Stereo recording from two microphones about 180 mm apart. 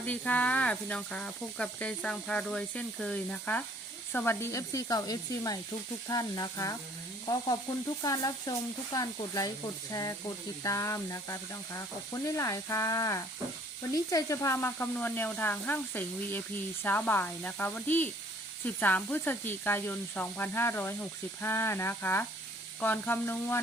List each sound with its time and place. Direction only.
0.0 s speech: 10° left (ahead or behind)
8.0 s speech: 20° left (ahead or behind)